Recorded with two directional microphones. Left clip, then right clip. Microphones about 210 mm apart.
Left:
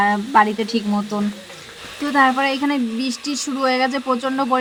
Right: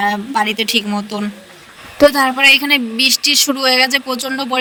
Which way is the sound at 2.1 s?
Centre (ahead or behind).